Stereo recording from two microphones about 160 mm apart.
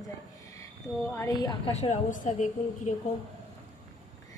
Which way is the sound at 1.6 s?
40° left (ahead or behind).